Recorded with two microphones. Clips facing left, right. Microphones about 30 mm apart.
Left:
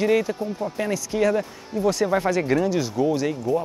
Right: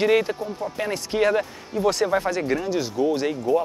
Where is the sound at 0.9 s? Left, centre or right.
Right.